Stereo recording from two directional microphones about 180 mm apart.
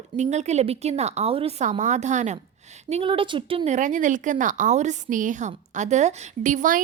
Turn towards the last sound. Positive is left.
turn(degrees=-45)  # may be behind; listen again after turning